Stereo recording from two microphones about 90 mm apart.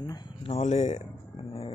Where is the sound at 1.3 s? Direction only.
90° left.